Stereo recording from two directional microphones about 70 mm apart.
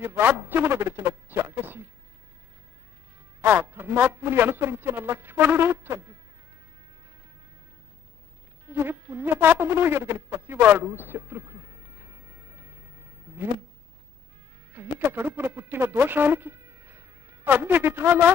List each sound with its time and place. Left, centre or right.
0.0 s a man's voice: right
3.3 s a man's voice: right
8.6 s insect: right
14.7 s speech: right